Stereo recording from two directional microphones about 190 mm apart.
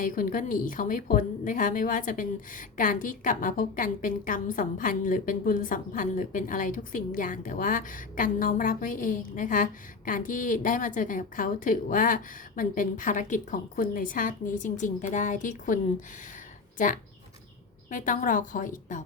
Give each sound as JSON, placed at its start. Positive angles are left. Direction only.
{"t": 0.0, "sound": "a woman's voice", "side_deg": 45}